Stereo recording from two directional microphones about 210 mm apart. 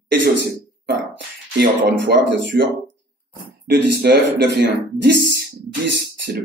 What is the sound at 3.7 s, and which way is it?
Speech, 55° right (ahead or behind).